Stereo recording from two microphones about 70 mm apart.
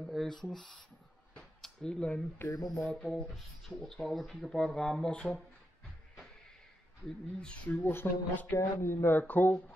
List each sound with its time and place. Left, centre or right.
0.0 s a sound: centre
0.5 s speech: centre
2.5 s music: left
3.0 s speech: centre
7.3 s speech: centre
7.8 s speech: left
9.2 s speech: left